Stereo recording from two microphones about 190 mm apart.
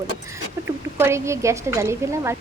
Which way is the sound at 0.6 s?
15° right (ahead or behind).